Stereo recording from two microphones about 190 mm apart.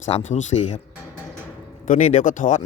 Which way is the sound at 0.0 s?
40° left (ahead or behind).